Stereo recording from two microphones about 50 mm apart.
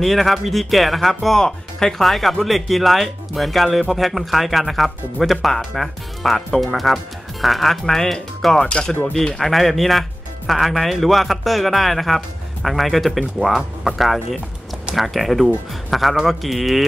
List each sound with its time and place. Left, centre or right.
0.0 s speech: centre
8.6 s speech: centre
9.1 s speech: centre